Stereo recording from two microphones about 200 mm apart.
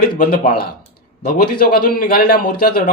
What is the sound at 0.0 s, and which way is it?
Speech, 45° left (ahead or behind).